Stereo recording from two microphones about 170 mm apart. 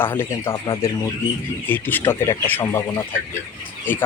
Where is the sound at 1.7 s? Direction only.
10° left (ahead or behind).